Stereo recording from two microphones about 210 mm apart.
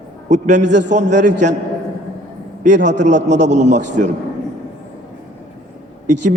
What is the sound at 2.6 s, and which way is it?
Speech, 35° right (ahead or behind).